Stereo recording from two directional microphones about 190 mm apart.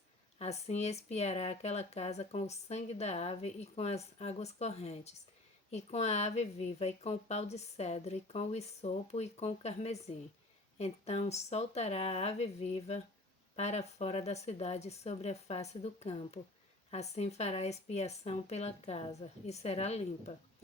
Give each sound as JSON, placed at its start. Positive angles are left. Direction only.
{"t": 0.3, "sound": "speech", "side_deg": 35}